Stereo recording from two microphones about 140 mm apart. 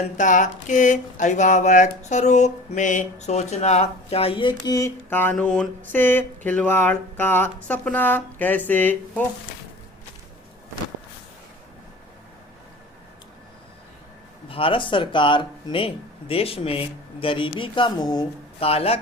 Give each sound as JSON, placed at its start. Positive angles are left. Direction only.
{"t": 0.2, "sound": "speech", "side_deg": 65}
{"t": 5.0, "sound": "a sound", "side_deg": 15}
{"t": 14.5, "sound": "speech", "side_deg": 40}
{"t": 18.6, "sound": "speech", "side_deg": 45}